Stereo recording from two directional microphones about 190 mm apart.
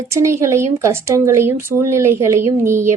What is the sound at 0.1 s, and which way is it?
Speech, 15° right (ahead or behind).